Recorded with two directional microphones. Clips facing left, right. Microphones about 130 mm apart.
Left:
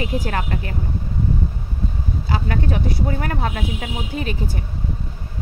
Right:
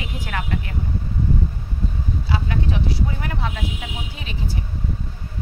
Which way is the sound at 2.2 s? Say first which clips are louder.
Left 3 dB; 45° left (ahead or behind).